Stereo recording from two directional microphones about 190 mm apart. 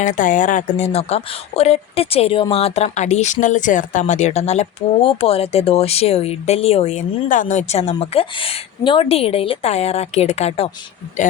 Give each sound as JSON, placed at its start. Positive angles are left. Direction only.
{"t": 0.0, "sound": "speech", "side_deg": 45}